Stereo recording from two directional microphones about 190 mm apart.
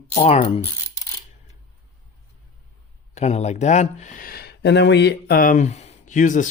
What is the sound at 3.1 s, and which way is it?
Speech, 35° left (ahead or behind).